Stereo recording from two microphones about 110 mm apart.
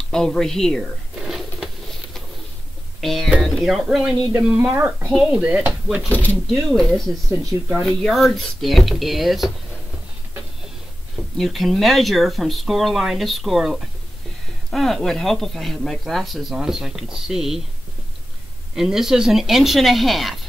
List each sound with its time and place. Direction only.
0.1 s a sound: 5° left (ahead or behind)
3.0 s speech: centre (ahead or behind)
6.0 s speech: 15° left (ahead or behind)
7.7 s speech: centre (ahead or behind)
11.3 s speech: centre (ahead or behind)
18.8 s speech: 5° right (ahead or behind)